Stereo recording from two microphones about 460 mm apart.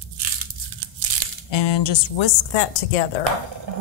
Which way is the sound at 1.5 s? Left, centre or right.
Left.